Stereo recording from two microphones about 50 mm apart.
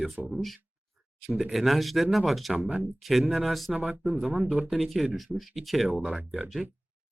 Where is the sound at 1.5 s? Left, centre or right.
Centre.